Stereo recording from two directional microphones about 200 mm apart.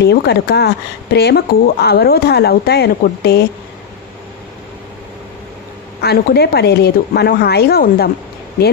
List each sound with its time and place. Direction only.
0.0 s speech: 55° left (ahead or behind)
5.9 s speech: 55° left (ahead or behind)